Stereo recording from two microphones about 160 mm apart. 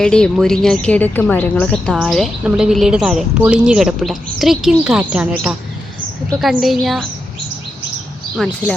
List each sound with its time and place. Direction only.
0.0 s a woman's voice: 5° left (ahead or behind)
8.4 s a woman's voice: 5° left (ahead or behind)